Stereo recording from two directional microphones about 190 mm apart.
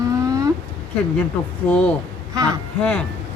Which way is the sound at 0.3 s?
20° right (ahead or behind).